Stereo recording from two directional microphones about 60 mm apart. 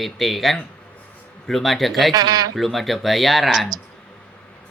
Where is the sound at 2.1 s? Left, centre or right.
Right.